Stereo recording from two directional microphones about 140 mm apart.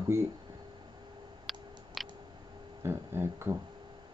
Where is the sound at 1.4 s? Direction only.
Centre (ahead or behind).